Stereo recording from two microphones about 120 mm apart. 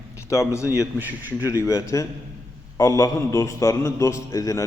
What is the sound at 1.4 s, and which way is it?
A man's voice, 25° left (ahead or behind).